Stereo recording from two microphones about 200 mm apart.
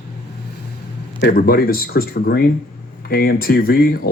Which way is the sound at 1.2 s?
45° left (ahead or behind).